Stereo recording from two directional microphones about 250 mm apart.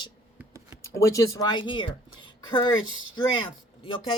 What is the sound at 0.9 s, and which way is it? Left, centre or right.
Speech, centre.